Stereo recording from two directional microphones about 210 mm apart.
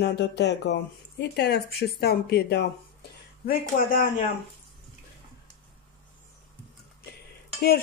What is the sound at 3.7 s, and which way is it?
Speech, 45° left (ahead or behind).